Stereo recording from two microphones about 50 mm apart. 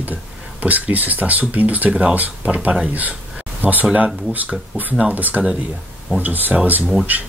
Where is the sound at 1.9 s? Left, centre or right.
Centre.